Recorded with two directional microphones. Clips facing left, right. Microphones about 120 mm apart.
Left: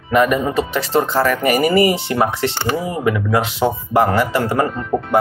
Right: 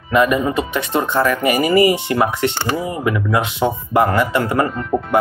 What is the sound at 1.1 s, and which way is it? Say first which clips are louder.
Speech: right 3 dB; 45° left (ahead or behind).